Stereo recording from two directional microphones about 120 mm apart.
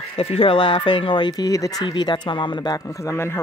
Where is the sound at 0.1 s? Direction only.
50° left (ahead or behind).